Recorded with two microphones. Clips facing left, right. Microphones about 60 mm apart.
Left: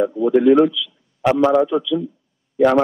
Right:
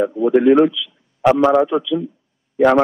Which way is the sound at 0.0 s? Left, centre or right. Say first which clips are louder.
Right 1 dB; right.